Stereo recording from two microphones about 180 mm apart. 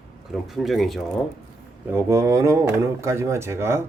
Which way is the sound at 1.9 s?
15° right (ahead or behind).